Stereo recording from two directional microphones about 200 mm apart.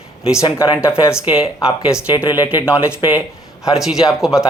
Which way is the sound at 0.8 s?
15° left (ahead or behind).